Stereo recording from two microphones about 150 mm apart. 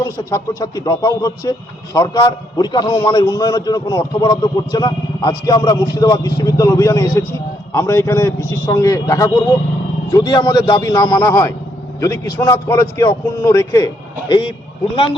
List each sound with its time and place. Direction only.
0.0 s speech: 25° left (ahead or behind)